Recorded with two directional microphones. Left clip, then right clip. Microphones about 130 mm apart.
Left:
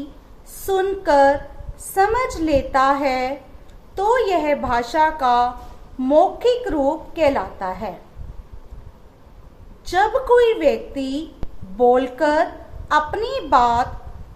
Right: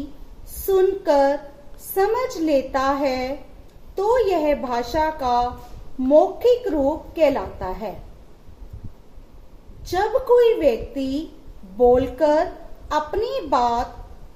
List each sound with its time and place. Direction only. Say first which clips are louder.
0.6 s a woman's voice: right 2 dB; 40° right (ahead or behind)
9.8 s a woman's voice: left 2 dB; 45° right (ahead or behind)